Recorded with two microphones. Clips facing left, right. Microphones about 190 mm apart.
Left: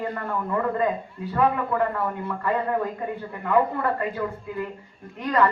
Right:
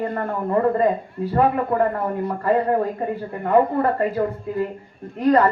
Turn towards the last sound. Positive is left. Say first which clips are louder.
# right 6 dB
turn(degrees=-35)  # may be behind; listen again after turning